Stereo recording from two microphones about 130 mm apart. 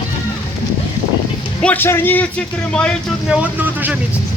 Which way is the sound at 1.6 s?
15° left (ahead or behind).